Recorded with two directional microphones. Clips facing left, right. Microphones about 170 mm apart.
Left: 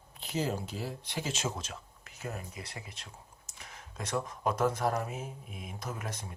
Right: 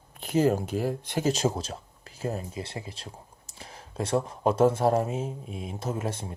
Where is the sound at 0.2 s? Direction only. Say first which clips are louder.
Right 10 dB; 55° right (ahead or behind).